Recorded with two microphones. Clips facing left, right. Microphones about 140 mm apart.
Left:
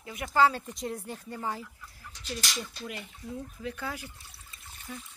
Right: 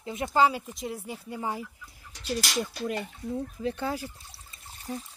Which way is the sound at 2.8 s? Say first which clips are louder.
Right 9 dB; 40° right (ahead or behind).